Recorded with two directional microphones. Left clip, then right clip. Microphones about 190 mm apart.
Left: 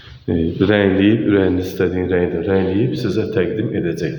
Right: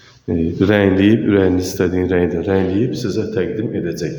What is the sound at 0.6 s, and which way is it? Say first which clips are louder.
A man's voice: right 1 dB; 20° right (ahead or behind).